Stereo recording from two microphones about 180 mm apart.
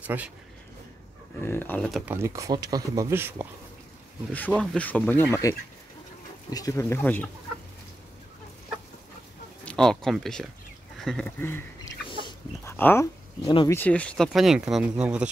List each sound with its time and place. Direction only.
0.0 s speech: 10° right (ahead or behind)
1.4 s speech: 10° left (ahead or behind)
1.9 s speech: centre (ahead or behind)
2.1 s speech: 15° right (ahead or behind)
4.3 s speech: 10° left (ahead or behind)
9.7 s speech: 5° left (ahead or behind)
11.0 s a sound: 5° left (ahead or behind)
12.6 s speech: 10° left (ahead or behind); by 15.2 s 5° right (ahead or behind)